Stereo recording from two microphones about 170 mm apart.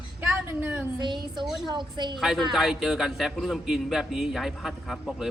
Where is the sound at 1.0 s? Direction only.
25° right (ahead or behind).